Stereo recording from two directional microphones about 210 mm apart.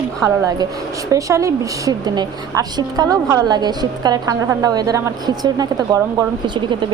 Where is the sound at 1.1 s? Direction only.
15° right (ahead or behind).